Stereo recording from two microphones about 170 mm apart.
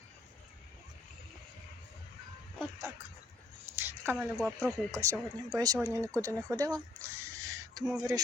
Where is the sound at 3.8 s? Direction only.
15° right (ahead or behind).